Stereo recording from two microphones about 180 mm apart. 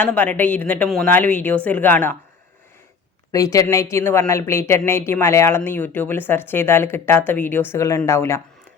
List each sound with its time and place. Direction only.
0.0 s speech: 10° left (ahead or behind)
3.3 s speech: 20° left (ahead or behind)